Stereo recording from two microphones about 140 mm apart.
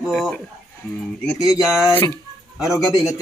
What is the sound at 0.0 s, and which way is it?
Speech, centre (ahead or behind).